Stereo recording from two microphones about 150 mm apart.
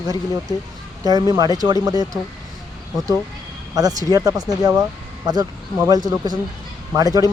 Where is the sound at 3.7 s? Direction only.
25° right (ahead or behind).